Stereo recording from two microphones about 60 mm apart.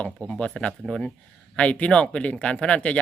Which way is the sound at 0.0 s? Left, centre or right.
Centre.